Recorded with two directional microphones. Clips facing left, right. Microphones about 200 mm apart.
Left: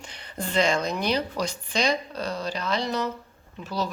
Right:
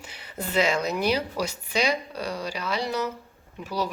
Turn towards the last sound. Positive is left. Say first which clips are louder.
# even
turn(degrees=-10)  # may be behind; listen again after turning